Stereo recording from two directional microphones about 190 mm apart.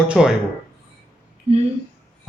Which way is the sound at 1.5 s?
35° right (ahead or behind).